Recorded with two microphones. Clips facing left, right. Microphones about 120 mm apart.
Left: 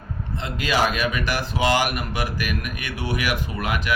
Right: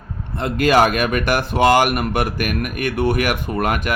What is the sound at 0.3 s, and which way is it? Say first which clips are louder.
Speech: right 8 dB; 55° right (ahead or behind).